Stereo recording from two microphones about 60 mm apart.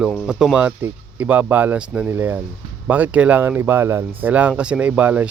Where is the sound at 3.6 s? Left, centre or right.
Right.